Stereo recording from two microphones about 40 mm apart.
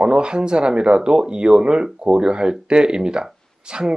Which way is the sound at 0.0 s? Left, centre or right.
Right.